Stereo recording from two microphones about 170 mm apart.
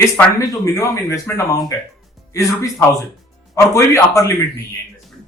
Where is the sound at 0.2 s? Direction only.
20° left (ahead or behind).